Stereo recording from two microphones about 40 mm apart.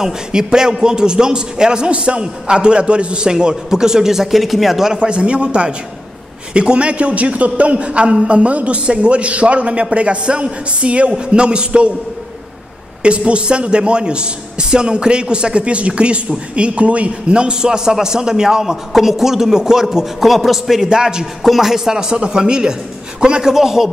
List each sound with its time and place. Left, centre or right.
0.0 s a man's voice: centre
4.9 s a man's voice: right
13.0 s a man's voice: right
20.2 s a man's voice: centre
20.8 s a woman's voice: centre
21.4 s a woman's voice: centre